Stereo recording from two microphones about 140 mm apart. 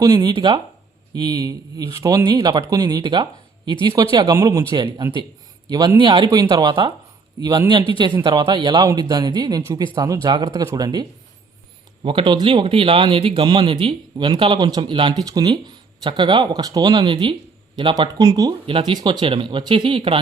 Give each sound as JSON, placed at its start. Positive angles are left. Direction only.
{"t": 0.0, "sound": "speech", "side_deg": -30}
{"t": 12.0, "sound": "speech", "side_deg": -35}